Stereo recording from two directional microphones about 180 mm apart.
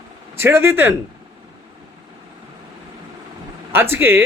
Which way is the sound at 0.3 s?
15° right (ahead or behind).